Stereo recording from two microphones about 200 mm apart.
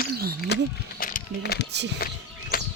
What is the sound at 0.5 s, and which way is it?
Speech, 55° left (ahead or behind).